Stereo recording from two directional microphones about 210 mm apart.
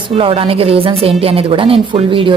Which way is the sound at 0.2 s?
25° right (ahead or behind).